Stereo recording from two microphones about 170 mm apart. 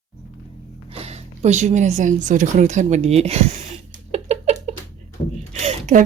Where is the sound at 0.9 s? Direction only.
40° right (ahead or behind).